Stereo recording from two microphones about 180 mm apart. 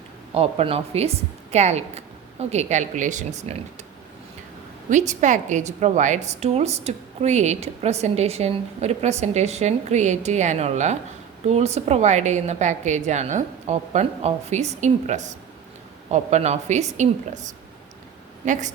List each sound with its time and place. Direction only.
0.3 s a woman's voice: 30° right (ahead or behind)
4.9 s a woman's voice: 40° right (ahead or behind)